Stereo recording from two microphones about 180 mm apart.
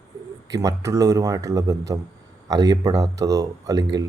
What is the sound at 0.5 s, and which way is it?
Speech, 20° right (ahead or behind).